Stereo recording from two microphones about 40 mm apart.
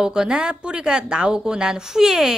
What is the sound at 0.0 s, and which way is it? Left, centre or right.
A woman's voice, centre.